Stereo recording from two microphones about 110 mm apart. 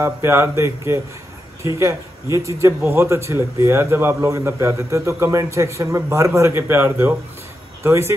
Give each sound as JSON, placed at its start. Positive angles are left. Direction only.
{"t": 0.0, "sound": "a man's voice", "side_deg": -25}